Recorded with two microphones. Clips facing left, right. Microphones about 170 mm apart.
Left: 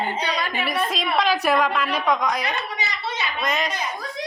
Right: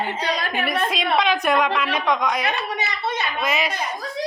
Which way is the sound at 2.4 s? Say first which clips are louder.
Right 3 dB; 60° right (ahead or behind).